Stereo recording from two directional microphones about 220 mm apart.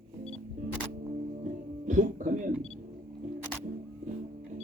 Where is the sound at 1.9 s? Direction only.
35° right (ahead or behind).